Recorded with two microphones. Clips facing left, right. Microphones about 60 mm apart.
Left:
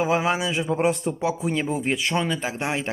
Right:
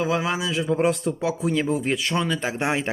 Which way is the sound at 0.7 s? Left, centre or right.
Centre.